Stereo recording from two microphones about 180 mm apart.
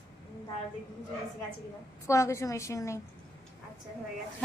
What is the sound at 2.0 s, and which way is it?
Speech, 15° left (ahead or behind).